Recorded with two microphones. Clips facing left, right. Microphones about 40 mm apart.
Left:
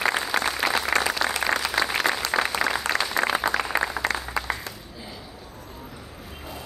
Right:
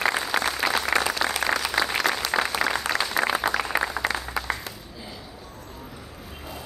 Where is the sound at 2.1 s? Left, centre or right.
Left.